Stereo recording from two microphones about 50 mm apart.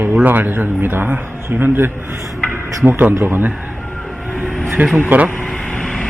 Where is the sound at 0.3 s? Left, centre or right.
Right.